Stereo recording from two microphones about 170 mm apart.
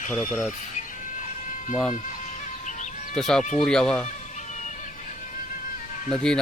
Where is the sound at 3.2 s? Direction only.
5° left (ahead or behind).